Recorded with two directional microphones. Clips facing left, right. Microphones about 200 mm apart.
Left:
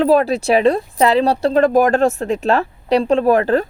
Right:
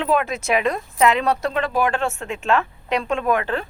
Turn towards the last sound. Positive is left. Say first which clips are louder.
# left 8 dB
turn(degrees=40)  # may be behind; listen again after turning